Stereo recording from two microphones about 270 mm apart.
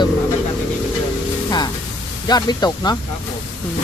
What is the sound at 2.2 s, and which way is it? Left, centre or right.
Speech, centre.